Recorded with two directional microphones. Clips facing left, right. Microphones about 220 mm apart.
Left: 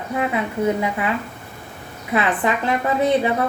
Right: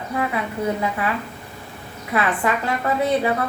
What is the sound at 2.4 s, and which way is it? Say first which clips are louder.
Speech: left 1 dB; 20° left (ahead or behind).